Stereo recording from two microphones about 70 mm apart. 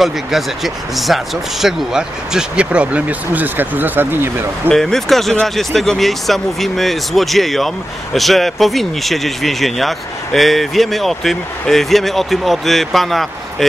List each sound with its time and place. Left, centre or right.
0.9 s speech: centre; by 4.5 s right
4.7 s speech: centre